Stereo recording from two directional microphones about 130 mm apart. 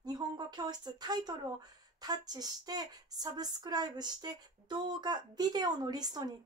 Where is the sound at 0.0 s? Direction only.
30° right (ahead or behind).